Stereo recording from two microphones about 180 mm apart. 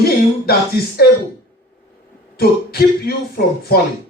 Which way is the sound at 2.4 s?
60° left (ahead or behind).